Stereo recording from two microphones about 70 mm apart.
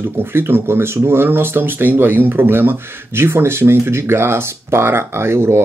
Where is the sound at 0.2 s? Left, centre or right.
Right.